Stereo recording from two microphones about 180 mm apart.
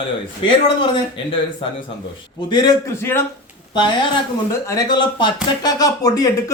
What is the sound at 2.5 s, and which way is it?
Speech, 25° left (ahead or behind).